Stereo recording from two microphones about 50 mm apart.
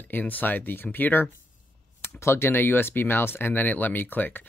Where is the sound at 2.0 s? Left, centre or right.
Left.